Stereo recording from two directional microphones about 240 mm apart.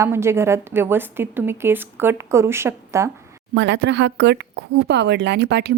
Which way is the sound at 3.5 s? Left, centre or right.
Right.